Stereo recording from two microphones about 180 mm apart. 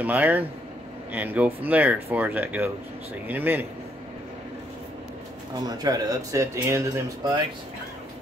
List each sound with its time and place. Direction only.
0.0 s speech: 10° right (ahead or behind)
5.7 s speech: 20° right (ahead or behind)